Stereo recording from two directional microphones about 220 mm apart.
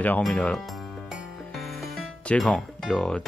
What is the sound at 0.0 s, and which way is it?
Speech, 5° left (ahead or behind).